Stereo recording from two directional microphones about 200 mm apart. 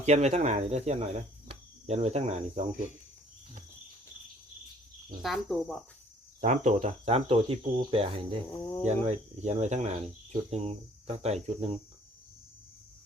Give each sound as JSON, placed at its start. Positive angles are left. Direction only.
{"t": 0.0, "sound": "speech", "side_deg": -35}
{"t": 5.2, "sound": "speech", "side_deg": 0}
{"t": 6.4, "sound": "cricket", "side_deg": -35}
{"t": 8.8, "sound": "speech", "side_deg": -35}